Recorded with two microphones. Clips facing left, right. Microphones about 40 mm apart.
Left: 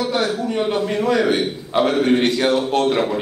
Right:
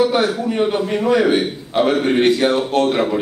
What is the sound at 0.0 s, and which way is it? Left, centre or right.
A man's voice, centre.